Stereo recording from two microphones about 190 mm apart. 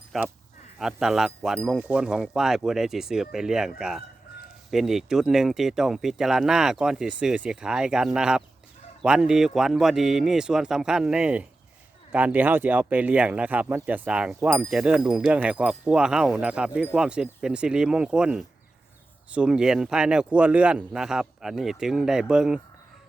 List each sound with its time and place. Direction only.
0.1 s speech: centre (ahead or behind)